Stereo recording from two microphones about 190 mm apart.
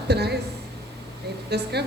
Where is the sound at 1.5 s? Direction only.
60° right (ahead or behind).